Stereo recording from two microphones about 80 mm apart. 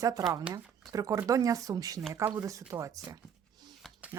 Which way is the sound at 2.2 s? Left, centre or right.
Right.